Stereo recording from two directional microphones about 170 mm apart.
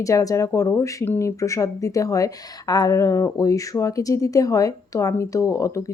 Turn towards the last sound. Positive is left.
turn(degrees=15)  # may be behind; listen again after turning